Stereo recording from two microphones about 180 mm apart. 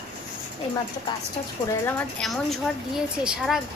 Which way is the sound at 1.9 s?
5° left (ahead or behind).